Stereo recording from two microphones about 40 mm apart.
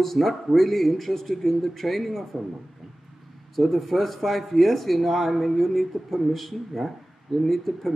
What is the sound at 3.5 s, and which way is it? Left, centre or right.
Speech, centre.